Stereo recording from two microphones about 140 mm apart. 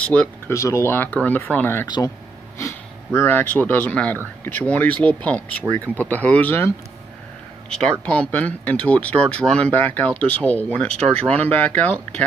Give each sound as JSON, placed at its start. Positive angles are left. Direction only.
{"t": 0.0, "sound": "speech", "side_deg": 10}
{"t": 0.5, "sound": "speech", "side_deg": 20}
{"t": 7.7, "sound": "speech", "side_deg": 5}